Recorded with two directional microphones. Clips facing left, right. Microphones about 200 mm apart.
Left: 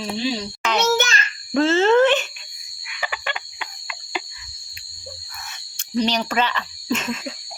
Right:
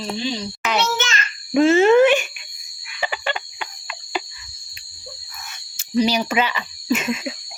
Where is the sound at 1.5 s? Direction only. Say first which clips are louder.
Right 3 dB; 15° right (ahead or behind).